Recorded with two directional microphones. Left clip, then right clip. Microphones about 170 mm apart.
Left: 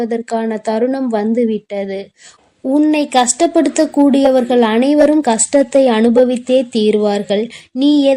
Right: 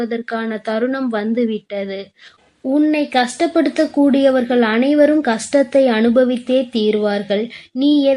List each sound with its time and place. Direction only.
0.0 s speech: 25° left (ahead or behind)